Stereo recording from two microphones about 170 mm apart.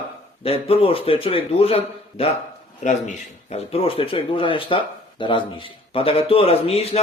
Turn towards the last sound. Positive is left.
turn(degrees=35)  # may be behind; listen again after turning